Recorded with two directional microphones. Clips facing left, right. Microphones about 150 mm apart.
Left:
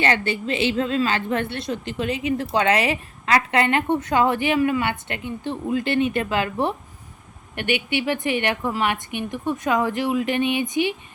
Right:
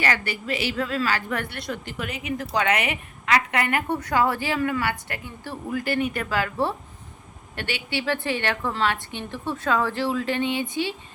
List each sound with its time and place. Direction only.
0.0 s a woman's voice: 25° left (ahead or behind)